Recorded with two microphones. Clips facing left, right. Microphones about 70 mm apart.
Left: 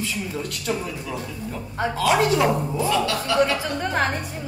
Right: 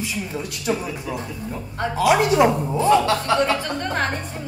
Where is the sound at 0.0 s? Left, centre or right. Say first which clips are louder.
Even; centre.